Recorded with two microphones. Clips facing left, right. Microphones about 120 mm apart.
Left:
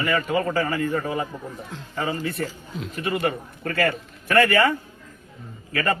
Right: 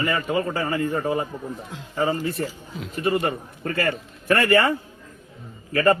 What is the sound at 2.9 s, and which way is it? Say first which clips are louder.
Speech: right 2 dB; 30° right (ahead or behind).